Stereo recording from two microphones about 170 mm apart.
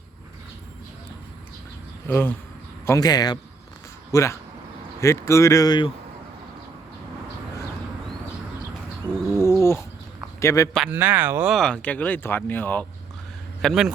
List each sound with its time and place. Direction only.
2.0 s speech: 10° left (ahead or behind)
9.1 s a sound: centre (ahead or behind)
9.4 s a sound: 15° left (ahead or behind)
10.4 s speech: 20° left (ahead or behind)
10.8 s speech: 10° right (ahead or behind)
11.5 s speech: 5° left (ahead or behind)
13.6 s speech: centre (ahead or behind)